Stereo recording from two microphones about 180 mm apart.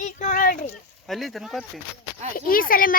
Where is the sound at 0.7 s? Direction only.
Centre (ahead or behind).